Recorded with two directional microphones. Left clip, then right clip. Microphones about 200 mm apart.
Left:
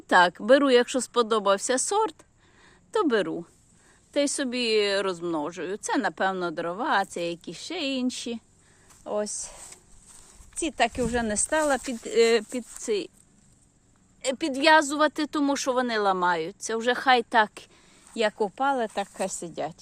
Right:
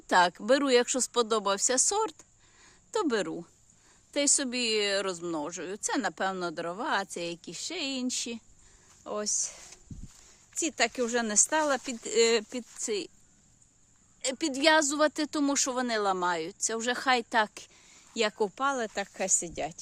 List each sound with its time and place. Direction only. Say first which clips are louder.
0.1 s a woman's voice: left 5 dB; 5° right (ahead or behind)
9.0 s a woman's voice: left 3 dB; 20° right (ahead or behind)
10.6 s a woman's voice: left 3 dB; 20° right (ahead or behind)
14.2 s a woman's voice: left 3 dB; 5° right (ahead or behind)